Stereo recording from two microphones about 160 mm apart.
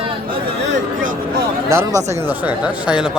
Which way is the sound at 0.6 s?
90° right.